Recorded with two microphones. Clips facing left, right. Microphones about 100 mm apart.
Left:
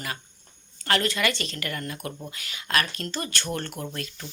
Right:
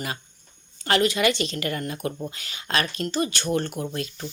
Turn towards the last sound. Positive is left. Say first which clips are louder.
# right 6 dB
turn(degrees=-20)  # may be behind; listen again after turning